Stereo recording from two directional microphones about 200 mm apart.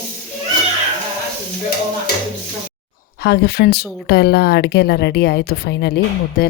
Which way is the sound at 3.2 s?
55° left (ahead or behind).